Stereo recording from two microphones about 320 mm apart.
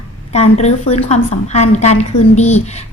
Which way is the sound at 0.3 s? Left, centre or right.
Left.